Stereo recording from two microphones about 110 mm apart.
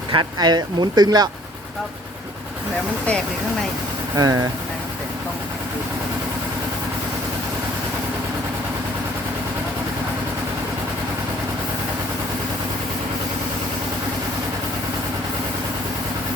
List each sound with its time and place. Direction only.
0.1 s speech: 40° right (ahead or behind)
4.2 s speech: 35° right (ahead or behind)